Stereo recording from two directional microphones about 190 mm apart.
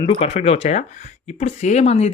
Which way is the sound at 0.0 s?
30° left (ahead or behind).